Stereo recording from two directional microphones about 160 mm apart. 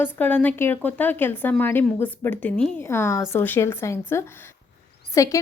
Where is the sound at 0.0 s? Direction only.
10° left (ahead or behind).